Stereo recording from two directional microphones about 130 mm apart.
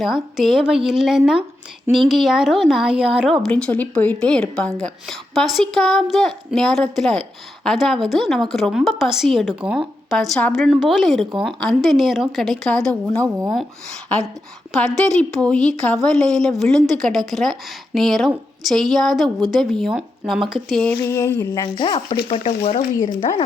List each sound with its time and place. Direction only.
0.0 s a woman's voice: centre (ahead or behind)
3.5 s a woman's voice: 10° left (ahead or behind)
14.7 s a woman's voice: 5° left (ahead or behind)
20.8 s a sound: 20° left (ahead or behind)
21.5 s speech: 35° left (ahead or behind)
22.3 s speech: 55° left (ahead or behind)